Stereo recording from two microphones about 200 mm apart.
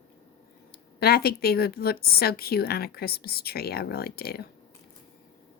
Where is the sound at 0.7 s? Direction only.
50° left (ahead or behind).